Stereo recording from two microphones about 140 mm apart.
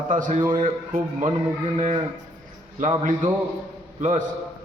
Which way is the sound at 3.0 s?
60° right (ahead or behind).